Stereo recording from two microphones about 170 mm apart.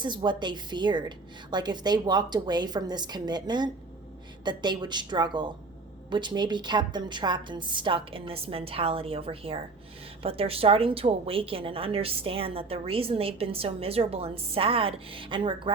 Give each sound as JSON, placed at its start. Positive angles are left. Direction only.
{"t": 0.0, "sound": "a woman's voice", "side_deg": -25}